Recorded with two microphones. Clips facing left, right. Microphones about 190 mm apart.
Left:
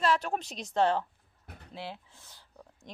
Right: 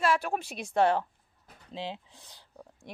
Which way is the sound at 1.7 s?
20° right (ahead or behind).